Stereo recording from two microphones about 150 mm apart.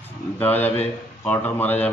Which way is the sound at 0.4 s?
10° left (ahead or behind).